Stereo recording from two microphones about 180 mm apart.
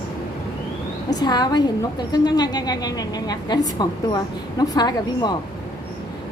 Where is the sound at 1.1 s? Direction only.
20° left (ahead or behind).